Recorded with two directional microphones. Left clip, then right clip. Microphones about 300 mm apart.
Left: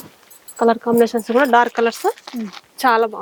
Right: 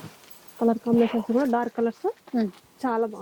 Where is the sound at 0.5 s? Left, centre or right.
Centre.